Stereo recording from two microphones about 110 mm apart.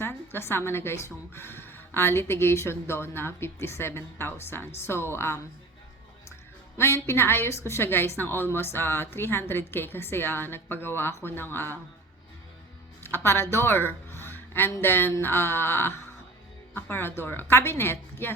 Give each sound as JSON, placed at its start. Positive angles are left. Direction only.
{"t": 0.0, "sound": "a woman's voice", "side_deg": 20}
{"t": 6.7, "sound": "a woman's voice", "side_deg": 25}
{"t": 13.0, "sound": "a woman's voice", "side_deg": 20}